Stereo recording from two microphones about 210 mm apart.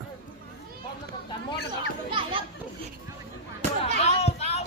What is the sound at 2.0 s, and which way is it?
Children playing, 25° right (ahead or behind).